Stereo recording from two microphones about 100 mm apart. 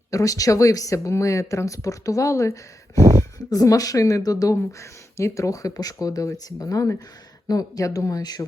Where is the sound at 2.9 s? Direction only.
30° right (ahead or behind).